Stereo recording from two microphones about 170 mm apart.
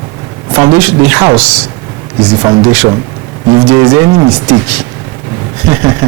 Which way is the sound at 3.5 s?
30° right (ahead or behind).